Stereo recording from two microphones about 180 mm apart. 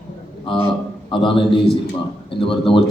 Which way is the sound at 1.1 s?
30° left (ahead or behind).